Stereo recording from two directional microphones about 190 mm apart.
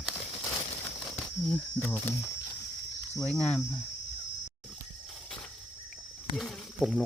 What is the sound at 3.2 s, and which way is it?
Speech, 5° left (ahead or behind).